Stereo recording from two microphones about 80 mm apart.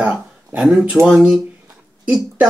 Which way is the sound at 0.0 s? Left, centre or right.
Centre.